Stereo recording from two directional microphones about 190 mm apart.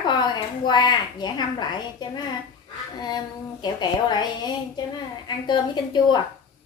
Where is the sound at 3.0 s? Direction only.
20° left (ahead or behind).